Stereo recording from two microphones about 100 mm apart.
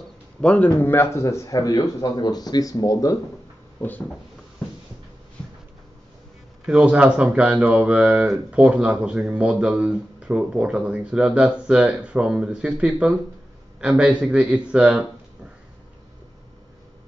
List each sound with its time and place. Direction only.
0.4 s speech: 15° left (ahead or behind); by 3.2 s 35° left (ahead or behind)
6.6 s speech: 10° right (ahead or behind)